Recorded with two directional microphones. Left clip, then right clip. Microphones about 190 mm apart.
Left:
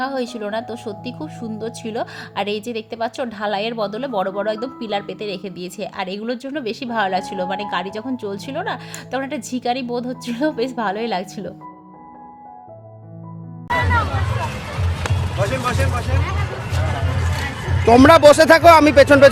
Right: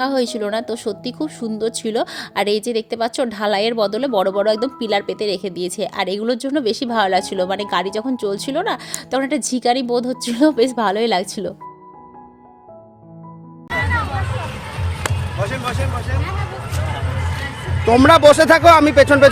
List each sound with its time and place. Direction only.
0.0 s a woman's voice: 35° right (ahead or behind)
13.7 s music: 10° left (ahead or behind)
15.1 s music: 50° right (ahead or behind)
17.8 s speech: 10° left (ahead or behind)